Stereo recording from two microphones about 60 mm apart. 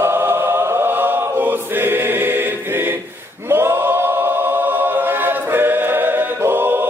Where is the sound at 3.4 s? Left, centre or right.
Right.